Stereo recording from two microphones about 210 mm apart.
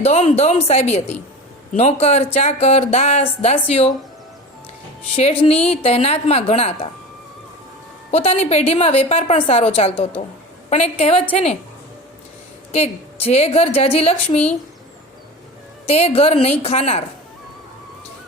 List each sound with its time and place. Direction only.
0.0 s speech: 30° left (ahead or behind)
5.1 s a woman's voice: 30° left (ahead or behind)
8.1 s a woman's voice: 30° left (ahead or behind)
12.7 s a woman's voice: 30° left (ahead or behind)
15.9 s a woman's voice: 30° left (ahead or behind)